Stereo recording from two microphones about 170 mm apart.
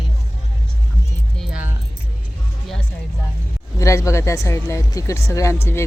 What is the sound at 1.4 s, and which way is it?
Speech, 5° right (ahead or behind).